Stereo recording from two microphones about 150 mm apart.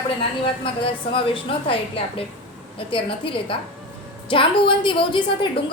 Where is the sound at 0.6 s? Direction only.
35° left (ahead or behind).